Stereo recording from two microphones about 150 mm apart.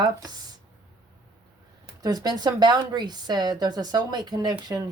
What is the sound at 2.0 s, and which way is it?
A woman's voice, 25° right (ahead or behind).